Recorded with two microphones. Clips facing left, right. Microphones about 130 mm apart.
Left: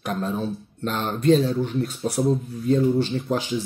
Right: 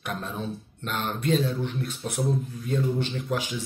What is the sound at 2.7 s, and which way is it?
Speech, 35° left (ahead or behind).